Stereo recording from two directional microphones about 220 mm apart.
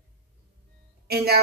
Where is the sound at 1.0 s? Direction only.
45° right (ahead or behind).